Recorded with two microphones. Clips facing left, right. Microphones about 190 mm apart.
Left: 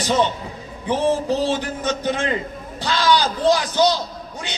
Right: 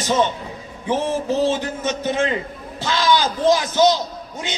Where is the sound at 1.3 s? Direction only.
20° right (ahead or behind).